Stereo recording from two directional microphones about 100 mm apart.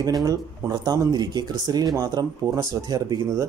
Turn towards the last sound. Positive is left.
turn(degrees=-40)  # may be behind; listen again after turning